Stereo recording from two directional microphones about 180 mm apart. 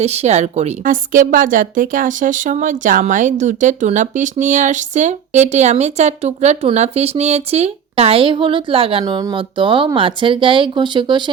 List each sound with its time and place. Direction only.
0.0 s a woman's voice: 35° right (ahead or behind)